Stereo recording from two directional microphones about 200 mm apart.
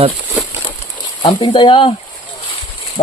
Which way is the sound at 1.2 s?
25° left (ahead or behind).